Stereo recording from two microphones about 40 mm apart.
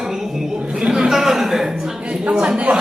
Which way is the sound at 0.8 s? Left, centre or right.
Centre.